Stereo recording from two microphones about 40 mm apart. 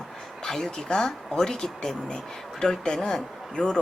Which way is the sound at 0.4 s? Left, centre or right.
Centre.